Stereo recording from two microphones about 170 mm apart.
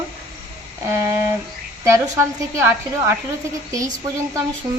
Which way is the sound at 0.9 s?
15° right (ahead or behind).